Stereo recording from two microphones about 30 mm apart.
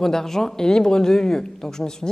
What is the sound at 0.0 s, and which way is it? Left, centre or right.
Speech, centre.